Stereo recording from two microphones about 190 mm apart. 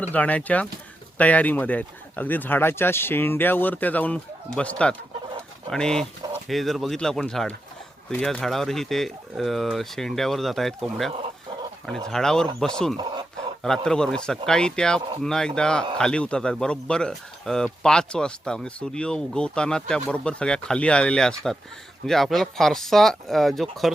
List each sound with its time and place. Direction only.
0.0 s speech: 10° left (ahead or behind)
13.0 s speech: 25° right (ahead or behind)
13.6 s speech: 5° left (ahead or behind)